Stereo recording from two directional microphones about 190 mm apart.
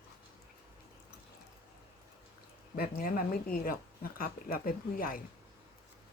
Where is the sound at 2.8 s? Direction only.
50° left (ahead or behind).